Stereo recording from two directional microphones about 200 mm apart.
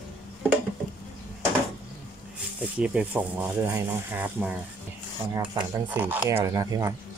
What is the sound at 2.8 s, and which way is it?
Speech, 5° right (ahead or behind).